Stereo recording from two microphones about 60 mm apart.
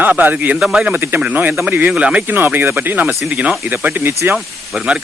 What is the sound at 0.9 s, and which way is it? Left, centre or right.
Speech, right.